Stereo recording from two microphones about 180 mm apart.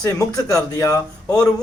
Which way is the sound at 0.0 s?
20° left (ahead or behind).